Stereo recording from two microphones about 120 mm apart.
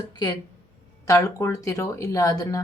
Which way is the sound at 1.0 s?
25° left (ahead or behind).